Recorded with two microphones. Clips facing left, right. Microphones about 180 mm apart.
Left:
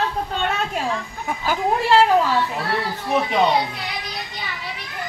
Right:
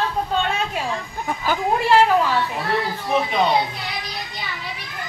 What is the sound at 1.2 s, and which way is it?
Speech, 10° left (ahead or behind).